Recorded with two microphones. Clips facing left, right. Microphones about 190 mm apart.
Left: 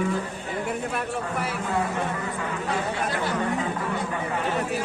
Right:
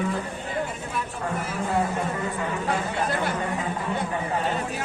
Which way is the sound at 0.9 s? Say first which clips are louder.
Left 1 dB; 65° left (ahead or behind).